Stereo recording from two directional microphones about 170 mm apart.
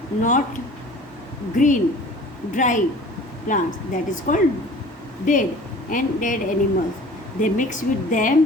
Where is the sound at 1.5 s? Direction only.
45° left (ahead or behind).